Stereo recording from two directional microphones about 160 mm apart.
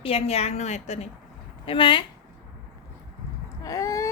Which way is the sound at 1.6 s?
30° left (ahead or behind).